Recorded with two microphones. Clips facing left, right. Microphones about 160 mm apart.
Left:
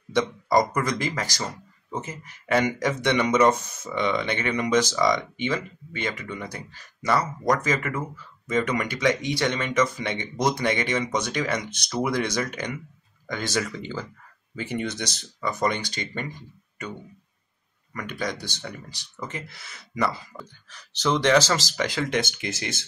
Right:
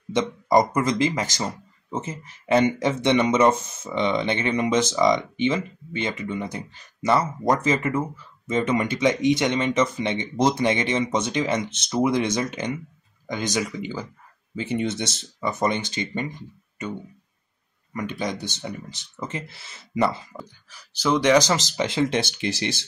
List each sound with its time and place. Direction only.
0.1 s a man's voice: 20° right (ahead or behind)
17.9 s a man's voice: 20° right (ahead or behind)
20.3 s a man's voice: 10° right (ahead or behind); by 22.8 s 30° right (ahead or behind)